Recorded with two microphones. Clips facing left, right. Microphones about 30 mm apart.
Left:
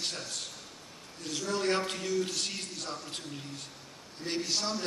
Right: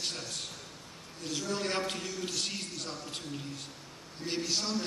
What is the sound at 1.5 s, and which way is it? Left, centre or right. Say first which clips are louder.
A man's voice: left 4 dB; centre.